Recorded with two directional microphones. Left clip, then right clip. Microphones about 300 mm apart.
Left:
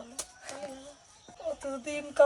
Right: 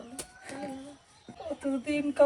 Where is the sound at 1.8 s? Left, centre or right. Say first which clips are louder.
Left 1 dB; left.